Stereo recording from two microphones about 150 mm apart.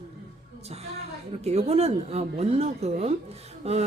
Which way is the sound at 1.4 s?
45° right (ahead or behind).